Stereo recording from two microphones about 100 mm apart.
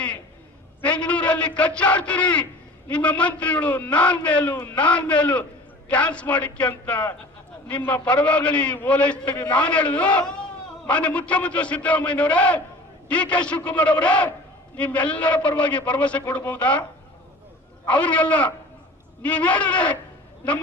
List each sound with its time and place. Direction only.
0.8 s a man's voice: 10° left (ahead or behind)
17.9 s a man's voice: 15° left (ahead or behind)